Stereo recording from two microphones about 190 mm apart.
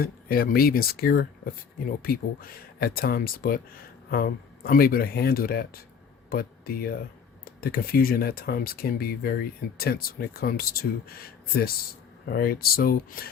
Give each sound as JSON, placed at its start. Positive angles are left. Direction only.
{"t": 0.0, "sound": "speech", "side_deg": 50}